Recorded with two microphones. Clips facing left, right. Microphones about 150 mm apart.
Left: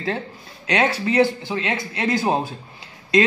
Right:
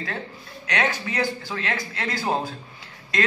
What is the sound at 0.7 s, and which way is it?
Speech, 30° left (ahead or behind).